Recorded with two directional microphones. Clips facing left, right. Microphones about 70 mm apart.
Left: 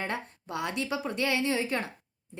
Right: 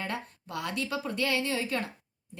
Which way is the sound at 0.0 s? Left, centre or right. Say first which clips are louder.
Left 2 dB; left.